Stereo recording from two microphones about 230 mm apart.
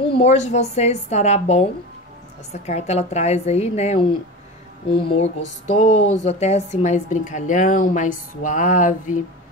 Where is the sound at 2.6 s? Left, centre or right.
Left.